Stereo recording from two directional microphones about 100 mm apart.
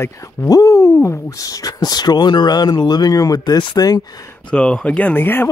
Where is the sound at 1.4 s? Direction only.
35° left (ahead or behind).